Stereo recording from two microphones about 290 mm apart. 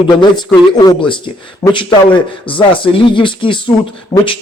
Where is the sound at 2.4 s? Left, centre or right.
Centre.